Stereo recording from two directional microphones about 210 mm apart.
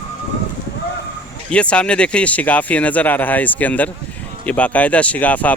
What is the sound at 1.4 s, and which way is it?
Speech, 5° left (ahead or behind).